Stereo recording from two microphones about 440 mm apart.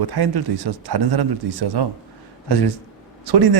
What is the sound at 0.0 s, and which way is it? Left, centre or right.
Speech, right.